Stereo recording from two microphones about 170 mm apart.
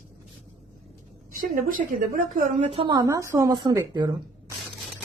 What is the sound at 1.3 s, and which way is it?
A woman's voice, 55° right (ahead or behind).